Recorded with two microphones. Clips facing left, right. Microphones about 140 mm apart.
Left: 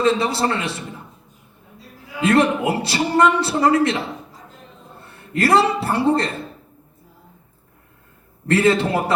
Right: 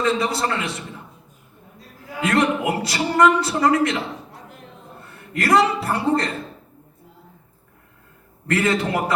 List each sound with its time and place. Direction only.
0.0 s a man's voice: 30° left (ahead or behind)
2.2 s a man's voice: 30° left (ahead or behind)
8.4 s a man's voice: 30° left (ahead or behind)